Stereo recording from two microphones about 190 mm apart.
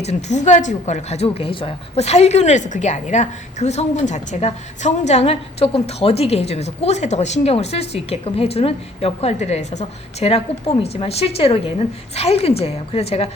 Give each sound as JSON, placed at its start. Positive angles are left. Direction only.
{"t": 0.0, "sound": "a woman's voice", "side_deg": 35}